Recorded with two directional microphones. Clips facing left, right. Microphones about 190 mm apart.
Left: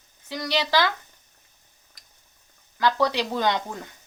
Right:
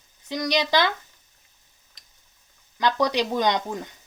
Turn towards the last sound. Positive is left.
turn(degrees=-15)  # may be behind; listen again after turning